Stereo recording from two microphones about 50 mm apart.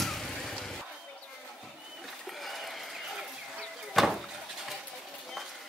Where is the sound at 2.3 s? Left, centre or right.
Centre.